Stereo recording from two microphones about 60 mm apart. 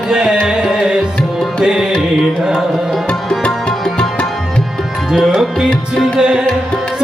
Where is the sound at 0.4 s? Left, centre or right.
Centre.